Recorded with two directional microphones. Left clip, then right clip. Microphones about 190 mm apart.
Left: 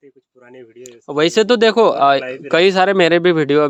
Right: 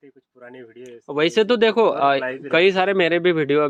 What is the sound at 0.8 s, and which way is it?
Speech, 30° left (ahead or behind).